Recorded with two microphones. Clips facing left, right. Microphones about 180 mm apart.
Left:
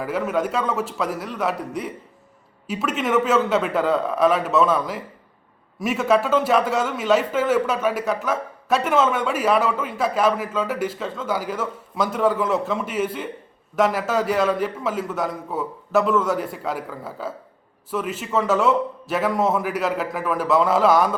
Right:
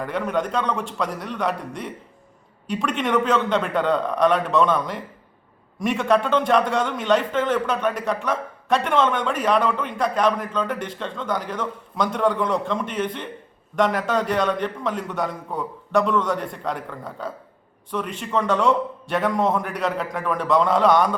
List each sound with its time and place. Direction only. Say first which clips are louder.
0.0 s a man's voice: left 1 dB; 5° left (ahead or behind)